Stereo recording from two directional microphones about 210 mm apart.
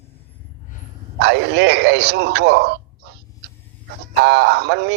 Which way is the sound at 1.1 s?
55° right (ahead or behind).